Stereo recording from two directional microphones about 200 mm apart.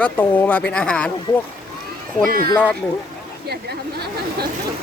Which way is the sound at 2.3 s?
45° right (ahead or behind).